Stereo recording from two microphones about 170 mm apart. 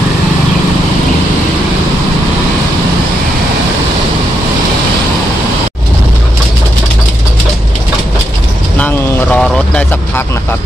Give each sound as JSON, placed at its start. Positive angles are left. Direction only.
{"t": 8.7, "sound": "vehicle", "side_deg": 10}